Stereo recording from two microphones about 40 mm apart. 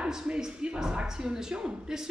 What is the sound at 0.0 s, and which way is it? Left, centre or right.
Speech, centre.